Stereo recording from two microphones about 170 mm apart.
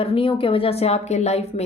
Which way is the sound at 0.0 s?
30° left (ahead or behind).